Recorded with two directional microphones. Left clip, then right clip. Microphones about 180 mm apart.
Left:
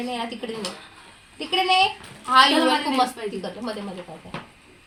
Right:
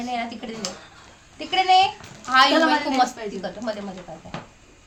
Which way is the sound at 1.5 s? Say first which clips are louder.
Right 2 dB; 35° right (ahead or behind).